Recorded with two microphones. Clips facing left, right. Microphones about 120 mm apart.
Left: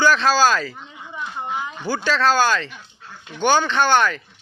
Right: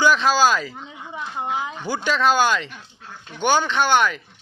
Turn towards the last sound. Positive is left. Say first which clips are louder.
# left 1 dB
turn(degrees=-10)  # may be behind; listen again after turning